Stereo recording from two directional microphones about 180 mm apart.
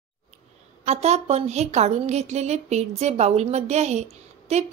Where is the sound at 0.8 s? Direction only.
35° right (ahead or behind).